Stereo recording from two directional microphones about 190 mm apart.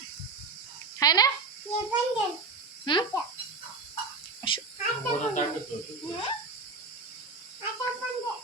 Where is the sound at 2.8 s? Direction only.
25° left (ahead or behind).